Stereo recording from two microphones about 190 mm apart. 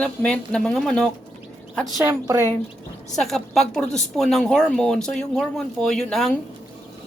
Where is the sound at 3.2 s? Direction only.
Centre (ahead or behind).